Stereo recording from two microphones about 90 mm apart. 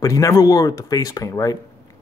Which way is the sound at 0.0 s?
35° left (ahead or behind).